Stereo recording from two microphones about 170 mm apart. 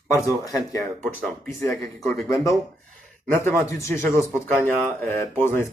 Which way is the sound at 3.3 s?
15° left (ahead or behind).